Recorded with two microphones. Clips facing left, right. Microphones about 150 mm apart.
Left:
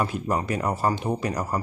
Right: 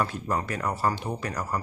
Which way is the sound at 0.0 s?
15° left (ahead or behind).